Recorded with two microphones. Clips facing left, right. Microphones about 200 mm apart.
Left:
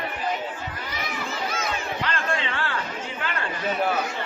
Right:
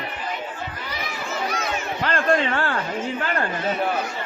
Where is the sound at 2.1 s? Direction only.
45° right (ahead or behind).